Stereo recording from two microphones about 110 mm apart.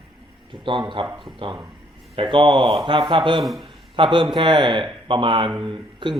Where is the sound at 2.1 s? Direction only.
50° right (ahead or behind).